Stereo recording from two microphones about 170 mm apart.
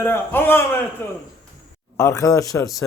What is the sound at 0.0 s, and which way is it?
A man's voice, 15° left (ahead or behind).